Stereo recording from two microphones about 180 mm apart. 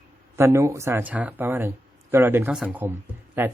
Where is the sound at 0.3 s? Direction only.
15° right (ahead or behind).